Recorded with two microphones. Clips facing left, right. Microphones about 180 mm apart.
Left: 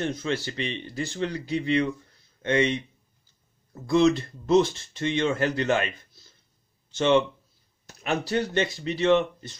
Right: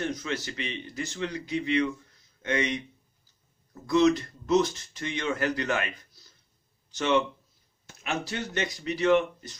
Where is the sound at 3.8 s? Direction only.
30° left (ahead or behind).